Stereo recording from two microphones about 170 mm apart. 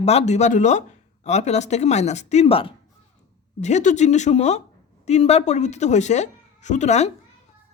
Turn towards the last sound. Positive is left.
turn(degrees=40)  # may be behind; listen again after turning